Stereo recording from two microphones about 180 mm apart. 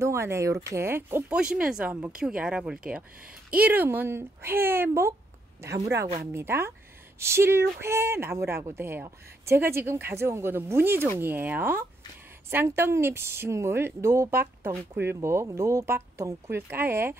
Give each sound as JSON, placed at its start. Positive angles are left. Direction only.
{"t": 0.0, "sound": "a woman's voice", "side_deg": -15}